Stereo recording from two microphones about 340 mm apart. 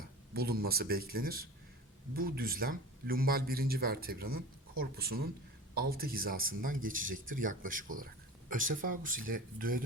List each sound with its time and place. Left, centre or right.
0.3 s speech: right